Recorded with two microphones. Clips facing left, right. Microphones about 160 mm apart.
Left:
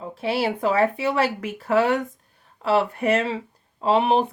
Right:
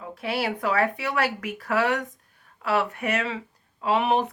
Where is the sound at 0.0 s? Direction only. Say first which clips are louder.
Left 4 dB; 25° left (ahead or behind).